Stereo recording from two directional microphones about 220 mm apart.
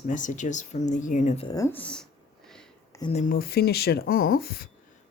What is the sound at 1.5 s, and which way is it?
Speech, 15° left (ahead or behind).